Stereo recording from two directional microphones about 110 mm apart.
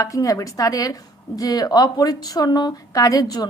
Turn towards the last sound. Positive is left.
turn(degrees=35)  # may be behind; listen again after turning